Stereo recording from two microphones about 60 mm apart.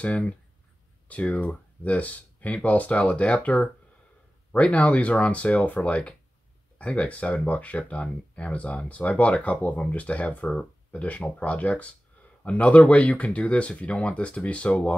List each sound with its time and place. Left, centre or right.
1.0 s speech: left